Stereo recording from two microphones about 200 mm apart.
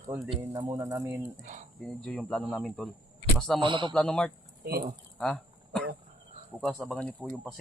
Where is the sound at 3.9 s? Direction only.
5° left (ahead or behind).